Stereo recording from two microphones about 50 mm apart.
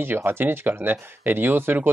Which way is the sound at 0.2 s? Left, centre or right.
Right.